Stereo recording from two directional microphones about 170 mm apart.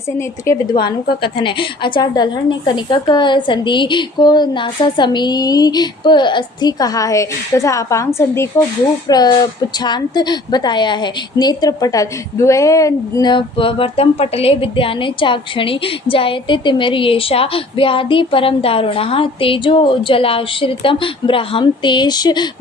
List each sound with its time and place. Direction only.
0.2 s a woman's voice: 20° left (ahead or behind)